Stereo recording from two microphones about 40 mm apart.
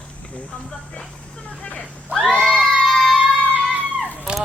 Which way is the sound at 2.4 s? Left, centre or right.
Centre.